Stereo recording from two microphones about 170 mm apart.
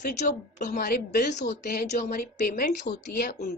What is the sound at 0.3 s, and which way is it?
Speech, 55° left (ahead or behind).